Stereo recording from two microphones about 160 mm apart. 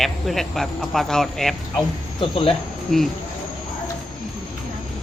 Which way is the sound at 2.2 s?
35° left (ahead or behind).